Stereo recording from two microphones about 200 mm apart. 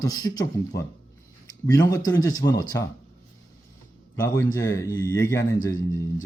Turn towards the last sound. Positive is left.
turn(degrees=15)  # may be behind; listen again after turning